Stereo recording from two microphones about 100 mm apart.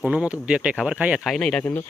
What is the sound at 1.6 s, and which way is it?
Speech, 25° left (ahead or behind).